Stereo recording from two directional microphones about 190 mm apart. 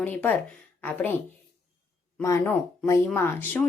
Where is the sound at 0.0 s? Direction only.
10° left (ahead or behind).